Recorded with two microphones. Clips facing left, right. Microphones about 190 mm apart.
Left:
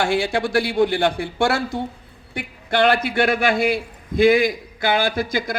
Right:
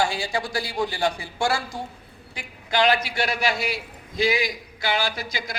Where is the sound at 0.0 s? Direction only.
55° left (ahead or behind).